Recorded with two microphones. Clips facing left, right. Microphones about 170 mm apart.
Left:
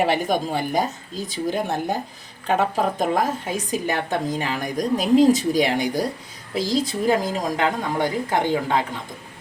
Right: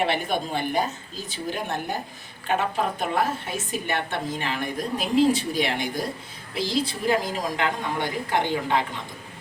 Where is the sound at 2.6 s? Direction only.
40° left (ahead or behind).